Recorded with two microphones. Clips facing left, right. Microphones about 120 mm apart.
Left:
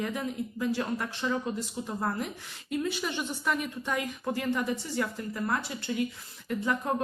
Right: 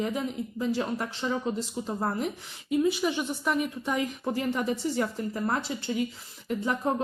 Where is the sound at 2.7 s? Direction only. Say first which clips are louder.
Right 6 dB; 5° right (ahead or behind).